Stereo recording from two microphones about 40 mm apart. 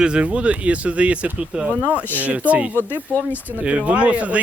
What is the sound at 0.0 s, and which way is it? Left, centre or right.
Speech, right.